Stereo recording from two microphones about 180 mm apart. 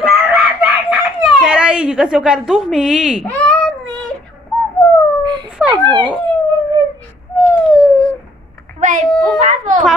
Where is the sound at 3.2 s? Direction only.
10° left (ahead or behind).